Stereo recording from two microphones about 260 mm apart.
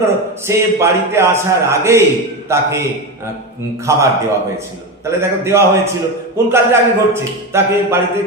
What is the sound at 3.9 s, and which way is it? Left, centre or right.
Speech, centre.